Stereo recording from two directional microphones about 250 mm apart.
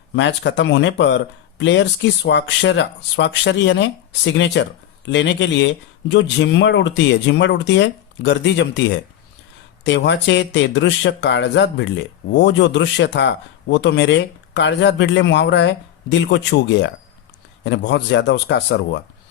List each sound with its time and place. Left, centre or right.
0.2 s speech: left